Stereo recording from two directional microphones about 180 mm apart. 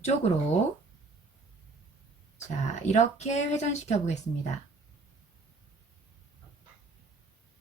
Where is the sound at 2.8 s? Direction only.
40° left (ahead or behind).